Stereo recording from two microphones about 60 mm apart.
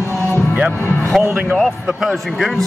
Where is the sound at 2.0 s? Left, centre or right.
Centre.